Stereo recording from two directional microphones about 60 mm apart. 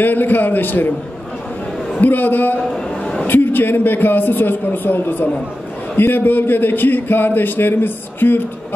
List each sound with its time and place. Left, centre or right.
0.0 s a man's voice: left
2.0 s a man's voice: left